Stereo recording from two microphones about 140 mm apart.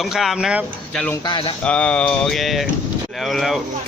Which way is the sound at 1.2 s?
35° left (ahead or behind).